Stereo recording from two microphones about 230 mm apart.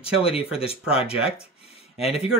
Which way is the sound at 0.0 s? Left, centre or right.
Left.